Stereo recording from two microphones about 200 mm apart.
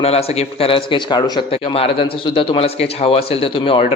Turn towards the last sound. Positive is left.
turn(degrees=25)  # may be behind; listen again after turning